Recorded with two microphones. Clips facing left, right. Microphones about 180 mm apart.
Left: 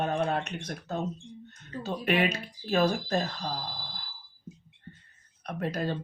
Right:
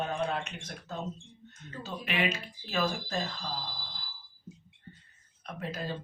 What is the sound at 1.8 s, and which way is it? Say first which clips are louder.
Speech: left 9 dB; 60° left (ahead or behind).